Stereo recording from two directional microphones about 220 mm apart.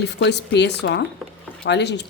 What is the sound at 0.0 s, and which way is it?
Speech, 50° left (ahead or behind).